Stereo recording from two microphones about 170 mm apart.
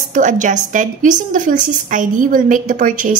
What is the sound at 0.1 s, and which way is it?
A woman's voice, 50° right (ahead or behind).